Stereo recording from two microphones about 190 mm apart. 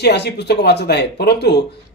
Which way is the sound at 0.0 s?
60° left (ahead or behind).